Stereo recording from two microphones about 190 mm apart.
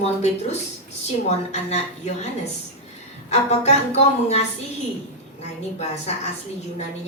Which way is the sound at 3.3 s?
35° left (ahead or behind).